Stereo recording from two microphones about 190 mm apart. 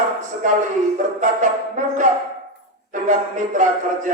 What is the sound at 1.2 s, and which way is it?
Brass instrument, 40° right (ahead or behind).